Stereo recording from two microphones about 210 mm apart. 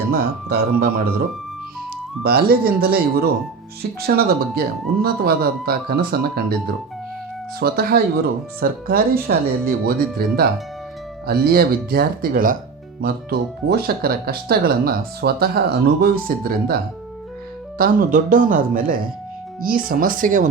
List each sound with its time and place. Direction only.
0.1 s speech: 45° right (ahead or behind)
2.2 s speech: 45° right (ahead or behind)
17.7 s speech: 40° right (ahead or behind)